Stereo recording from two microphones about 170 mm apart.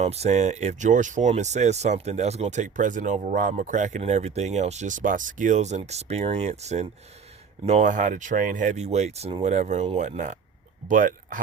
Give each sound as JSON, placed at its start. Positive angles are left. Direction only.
{"t": 0.0, "sound": "speech", "side_deg": -40}